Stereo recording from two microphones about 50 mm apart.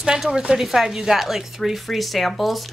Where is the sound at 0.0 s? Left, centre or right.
Centre.